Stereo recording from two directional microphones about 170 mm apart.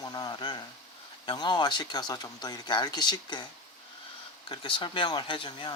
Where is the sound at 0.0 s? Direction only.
25° left (ahead or behind).